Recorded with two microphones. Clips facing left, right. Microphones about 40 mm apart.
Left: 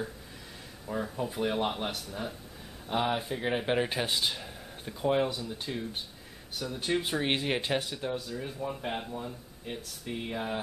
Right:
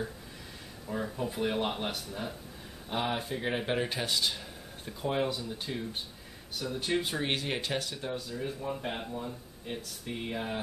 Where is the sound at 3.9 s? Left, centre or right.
Centre.